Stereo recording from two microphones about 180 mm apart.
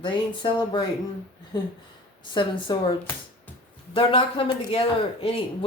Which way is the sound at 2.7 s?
25° left (ahead or behind).